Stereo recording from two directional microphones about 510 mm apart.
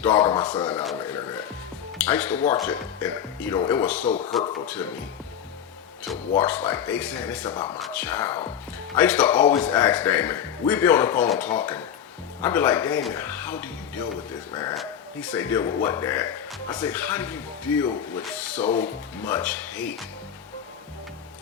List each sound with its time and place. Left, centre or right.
0.0 s speech: centre
6.1 s speech: centre